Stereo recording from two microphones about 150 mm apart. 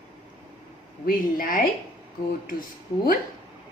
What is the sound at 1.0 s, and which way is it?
Speech, 70° left (ahead or behind).